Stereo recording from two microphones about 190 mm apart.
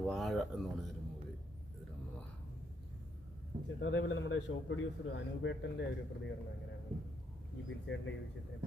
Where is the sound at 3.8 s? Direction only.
85° left.